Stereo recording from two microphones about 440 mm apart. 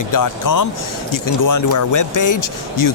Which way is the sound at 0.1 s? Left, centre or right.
Left.